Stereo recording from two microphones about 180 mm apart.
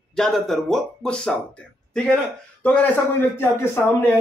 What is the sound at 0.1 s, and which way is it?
Speech, centre (ahead or behind).